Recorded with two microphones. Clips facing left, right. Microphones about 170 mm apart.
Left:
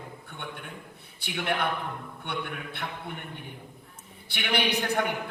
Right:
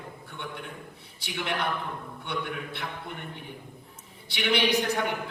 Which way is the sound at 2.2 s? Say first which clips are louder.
Right 1 dB; 55° left (ahead or behind).